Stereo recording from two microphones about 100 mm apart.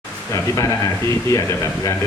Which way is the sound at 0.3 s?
35° left (ahead or behind).